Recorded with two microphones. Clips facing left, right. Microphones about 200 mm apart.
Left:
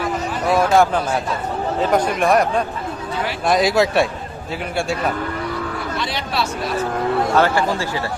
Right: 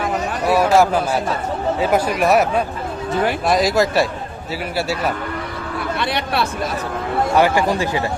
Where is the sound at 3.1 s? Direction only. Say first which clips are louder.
Right 7 dB; 50° right (ahead or behind).